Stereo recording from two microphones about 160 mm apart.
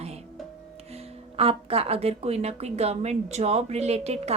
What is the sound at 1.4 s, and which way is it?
Speech, 35° right (ahead or behind).